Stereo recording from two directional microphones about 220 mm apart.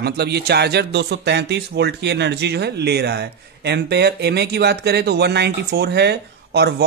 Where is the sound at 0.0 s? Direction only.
50° right (ahead or behind).